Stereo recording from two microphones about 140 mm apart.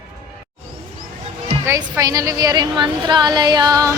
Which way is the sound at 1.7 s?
20° right (ahead or behind).